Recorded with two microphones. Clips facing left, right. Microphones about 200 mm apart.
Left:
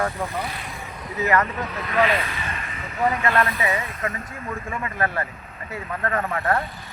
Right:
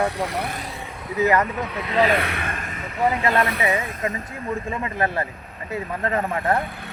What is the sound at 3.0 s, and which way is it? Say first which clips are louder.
Speech: right 1 dB; 20° right (ahead or behind).